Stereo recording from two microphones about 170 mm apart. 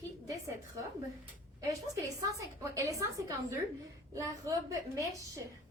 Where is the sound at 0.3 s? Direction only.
20° right (ahead or behind).